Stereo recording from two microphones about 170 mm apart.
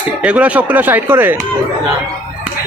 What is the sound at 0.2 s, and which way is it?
Speech, 5° right (ahead or behind).